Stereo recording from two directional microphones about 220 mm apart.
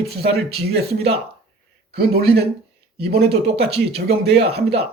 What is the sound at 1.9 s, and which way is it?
Speech, 45° right (ahead or behind).